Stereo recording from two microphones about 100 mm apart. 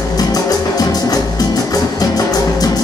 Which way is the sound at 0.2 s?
40° left (ahead or behind).